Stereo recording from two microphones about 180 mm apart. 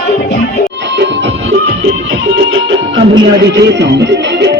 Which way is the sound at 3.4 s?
70° right (ahead or behind).